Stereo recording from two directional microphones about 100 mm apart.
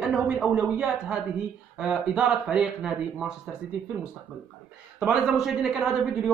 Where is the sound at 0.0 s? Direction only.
5° right (ahead or behind).